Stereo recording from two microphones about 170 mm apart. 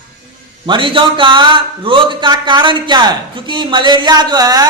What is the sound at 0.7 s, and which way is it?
Speech, 30° right (ahead or behind).